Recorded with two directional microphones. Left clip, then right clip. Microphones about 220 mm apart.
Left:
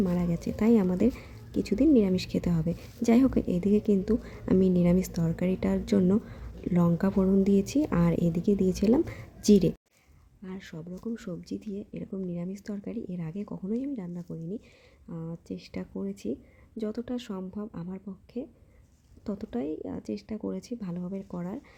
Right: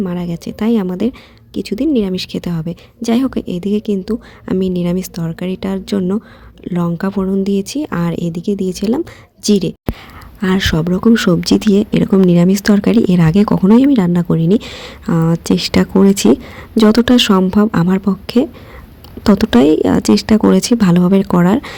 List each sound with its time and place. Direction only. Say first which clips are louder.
0.0 s speech: right 8 dB; 25° right (ahead or behind)